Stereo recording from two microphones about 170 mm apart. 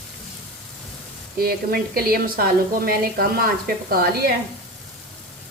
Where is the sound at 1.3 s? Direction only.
60° right (ahead or behind).